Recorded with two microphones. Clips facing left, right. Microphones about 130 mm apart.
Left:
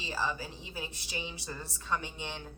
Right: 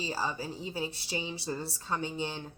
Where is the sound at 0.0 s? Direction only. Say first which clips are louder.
Right 1 dB; 35° right (ahead or behind).